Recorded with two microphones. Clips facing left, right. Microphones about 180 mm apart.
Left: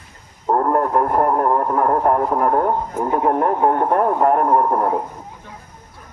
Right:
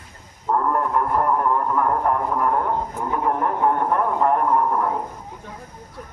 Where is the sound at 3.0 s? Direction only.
40° left (ahead or behind).